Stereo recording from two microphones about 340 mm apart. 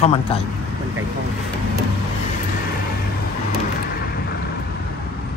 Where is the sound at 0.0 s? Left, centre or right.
Centre.